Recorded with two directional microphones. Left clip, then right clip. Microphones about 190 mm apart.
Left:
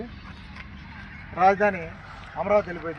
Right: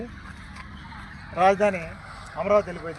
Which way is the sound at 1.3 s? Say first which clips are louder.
Even; 55° right (ahead or behind).